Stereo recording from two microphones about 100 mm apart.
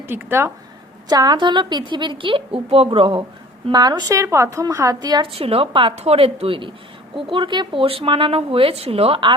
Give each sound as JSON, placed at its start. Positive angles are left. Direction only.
{"t": 0.1, "sound": "speech", "side_deg": -25}
{"t": 1.0, "sound": "a woman's voice", "side_deg": -40}
{"t": 3.7, "sound": "speech", "side_deg": -45}
{"t": 5.2, "sound": "a woman's voice", "side_deg": -75}